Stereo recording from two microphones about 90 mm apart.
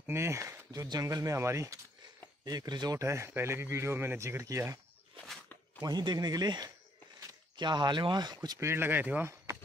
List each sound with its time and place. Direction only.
0.0 s speech: 30° right (ahead or behind)
0.7 s speech: 45° right (ahead or behind)
2.4 s a man's voice: 50° right (ahead or behind)
3.0 s speech: 30° right (ahead or behind)
5.8 s a man's voice: 50° right (ahead or behind)
8.5 s speech: 25° right (ahead or behind)